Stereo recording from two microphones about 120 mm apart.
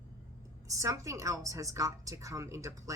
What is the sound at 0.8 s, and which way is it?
A woman's voice, 25° right (ahead or behind).